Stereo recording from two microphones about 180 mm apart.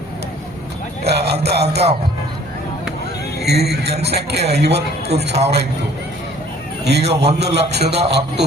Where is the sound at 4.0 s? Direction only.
65° right (ahead or behind).